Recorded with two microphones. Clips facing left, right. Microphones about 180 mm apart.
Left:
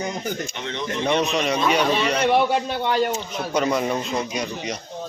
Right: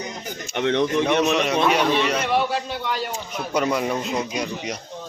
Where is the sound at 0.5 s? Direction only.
60° right (ahead or behind).